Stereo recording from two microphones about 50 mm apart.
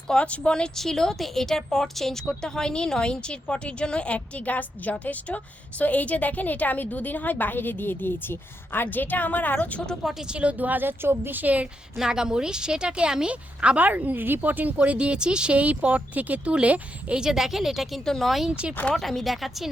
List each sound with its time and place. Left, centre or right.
0.1 s speech: left
0.8 s a woman's voice: centre; by 9.8 s left
10.0 s a woman's voice: centre
10.2 s a woman's voice: right
10.6 s speech: right
11.9 s a woman's voice: centre
17.2 s a woman's voice: centre
18.0 s a woman's voice: centre
18.4 s a woman's voice: right
18.9 s a woman's voice: centre